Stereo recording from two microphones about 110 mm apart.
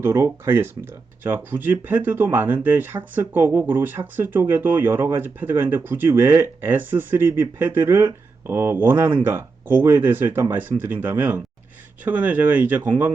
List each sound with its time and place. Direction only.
0.0 s speech: 25° right (ahead or behind)